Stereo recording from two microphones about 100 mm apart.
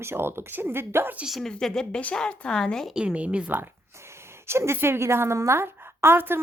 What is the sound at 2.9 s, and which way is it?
A woman's voice, 10° right (ahead or behind).